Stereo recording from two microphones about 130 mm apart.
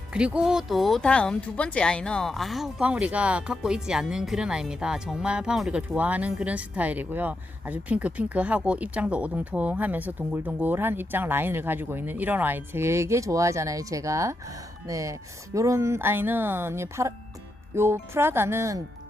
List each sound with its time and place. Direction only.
0.1 s speech: 5° right (ahead or behind)